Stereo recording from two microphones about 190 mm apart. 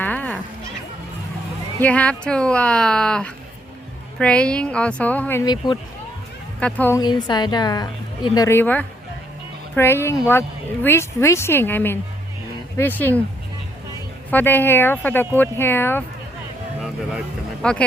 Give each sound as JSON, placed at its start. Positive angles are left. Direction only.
{"t": 0.0, "sound": "children playing", "side_deg": 5}
{"t": 1.8, "sound": "speech", "side_deg": 5}
{"t": 6.6, "sound": "speech", "side_deg": 5}
{"t": 7.0, "sound": "a woman's voice", "side_deg": 20}
{"t": 14.3, "sound": "speech", "side_deg": 10}